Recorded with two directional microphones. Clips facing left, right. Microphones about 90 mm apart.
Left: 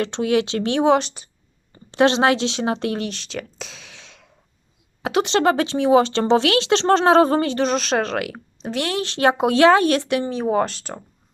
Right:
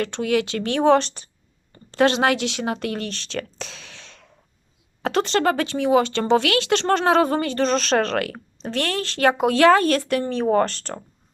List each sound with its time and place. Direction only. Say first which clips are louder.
0.0 s speech: left 2 dB; 25° left (ahead or behind); by 1.3 s 10° left (ahead or behind)
1.9 s speech: left 2 dB; 25° left (ahead or behind)
3.1 s speech: right 1 dB; 10° left (ahead or behind)
5.3 s speech: left 2 dB; 25° left (ahead or behind)
7.7 s speech: right 1 dB; 10° left (ahead or behind)